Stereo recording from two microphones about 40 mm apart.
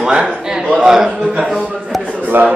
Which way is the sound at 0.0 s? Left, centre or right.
Right.